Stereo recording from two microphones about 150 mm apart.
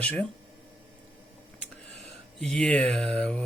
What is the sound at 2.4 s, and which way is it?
Speech, 5° left (ahead or behind).